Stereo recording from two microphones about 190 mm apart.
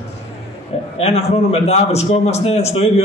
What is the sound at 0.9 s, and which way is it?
A man's voice, 35° left (ahead or behind).